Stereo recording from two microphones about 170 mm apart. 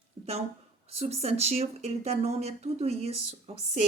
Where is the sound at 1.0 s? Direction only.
40° right (ahead or behind).